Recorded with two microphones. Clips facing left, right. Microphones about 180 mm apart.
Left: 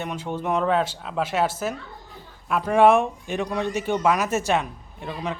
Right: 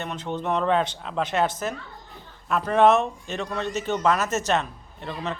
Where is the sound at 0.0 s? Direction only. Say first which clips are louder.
Left 1 dB; 10° left (ahead or behind).